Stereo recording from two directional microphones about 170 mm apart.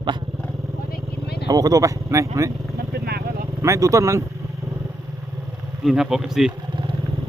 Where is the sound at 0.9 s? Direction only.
65° left (ahead or behind).